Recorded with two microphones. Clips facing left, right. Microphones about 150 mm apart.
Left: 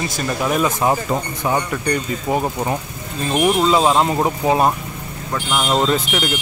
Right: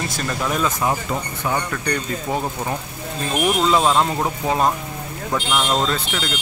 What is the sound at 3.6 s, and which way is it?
Speech, 10° left (ahead or behind).